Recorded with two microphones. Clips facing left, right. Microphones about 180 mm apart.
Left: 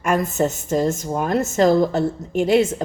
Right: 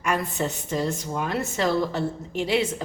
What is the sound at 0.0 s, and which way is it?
A woman's voice, 45° left (ahead or behind).